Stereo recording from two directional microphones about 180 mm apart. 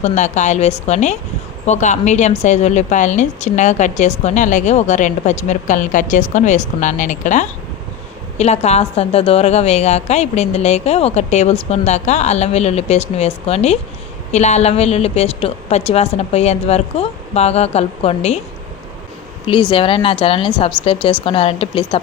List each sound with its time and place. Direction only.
0.0 s a woman's voice: 40° left (ahead or behind)
19.7 s speech: 30° left (ahead or behind)